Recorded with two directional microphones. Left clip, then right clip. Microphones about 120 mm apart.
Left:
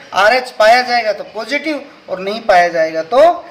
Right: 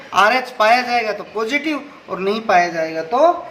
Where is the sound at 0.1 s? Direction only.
30° left (ahead or behind).